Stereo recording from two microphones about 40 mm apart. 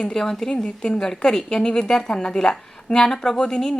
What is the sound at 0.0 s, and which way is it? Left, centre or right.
A woman's voice, centre.